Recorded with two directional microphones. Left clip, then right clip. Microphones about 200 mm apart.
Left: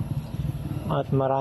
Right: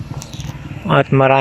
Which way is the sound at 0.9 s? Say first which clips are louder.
Right 13 dB; 50° right (ahead or behind).